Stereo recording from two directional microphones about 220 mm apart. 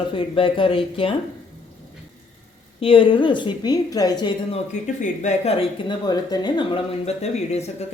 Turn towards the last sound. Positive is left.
turn(degrees=30)  # may be behind; listen again after turning